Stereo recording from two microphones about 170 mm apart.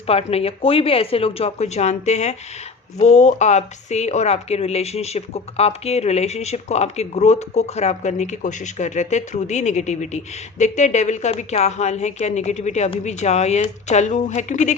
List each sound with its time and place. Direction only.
0.1 s speech: 35° left (ahead or behind)